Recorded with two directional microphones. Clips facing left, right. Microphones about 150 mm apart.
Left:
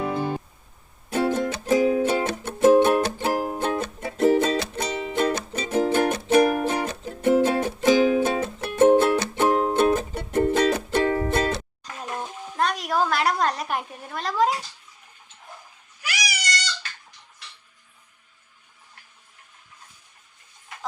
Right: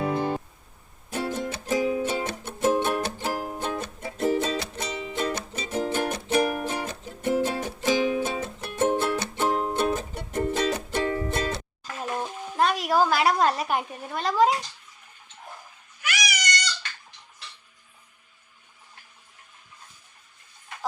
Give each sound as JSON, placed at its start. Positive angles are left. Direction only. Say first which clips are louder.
{"t": 1.1, "sound": "music", "louder": "left 6 dB", "side_deg": 85}
{"t": 12.5, "sound": "a sound", "louder": "right 2 dB", "side_deg": 0}
{"t": 16.0, "sound": "cat", "louder": "right 1 dB", "side_deg": 30}